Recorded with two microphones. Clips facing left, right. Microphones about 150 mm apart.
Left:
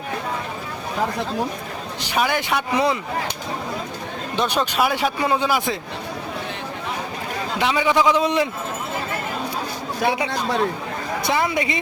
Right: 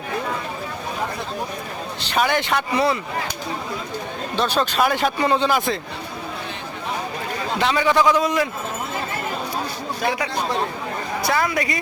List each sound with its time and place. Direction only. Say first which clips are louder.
2.0 s speech: right 1 dB; 10° left (ahead or behind)
4.4 s speech: right 1 dB; 15° left (ahead or behind)
7.6 s speech: even; 10° left (ahead or behind)
8.2 s a woman's voice: left 1 dB; 30° left (ahead or behind)
11.2 s a woman's voice: even; 20° left (ahead or behind)